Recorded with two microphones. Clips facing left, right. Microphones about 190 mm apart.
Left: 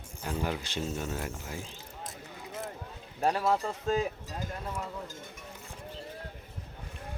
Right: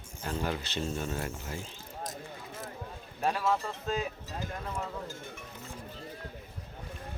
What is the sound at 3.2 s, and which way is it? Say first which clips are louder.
Speech: left 2 dB; 35° left (ahead or behind).